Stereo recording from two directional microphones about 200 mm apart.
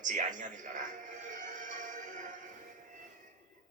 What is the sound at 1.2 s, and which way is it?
Music, 40° right (ahead or behind).